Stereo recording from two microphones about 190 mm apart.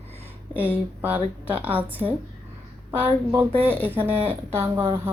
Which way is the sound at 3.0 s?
10° right (ahead or behind).